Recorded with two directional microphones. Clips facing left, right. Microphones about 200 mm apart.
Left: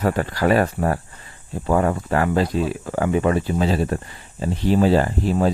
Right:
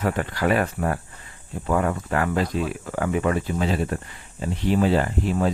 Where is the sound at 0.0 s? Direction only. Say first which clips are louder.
Left 3 dB; 40° left (ahead or behind).